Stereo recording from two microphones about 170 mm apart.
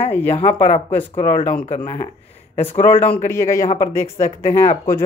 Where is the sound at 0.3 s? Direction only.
40° left (ahead or behind).